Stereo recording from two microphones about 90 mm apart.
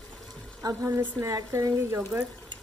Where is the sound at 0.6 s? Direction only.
35° right (ahead or behind).